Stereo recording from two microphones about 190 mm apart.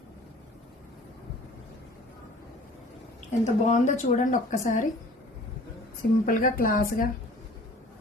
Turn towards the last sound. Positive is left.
turn(degrees=45)  # may be behind; listen again after turning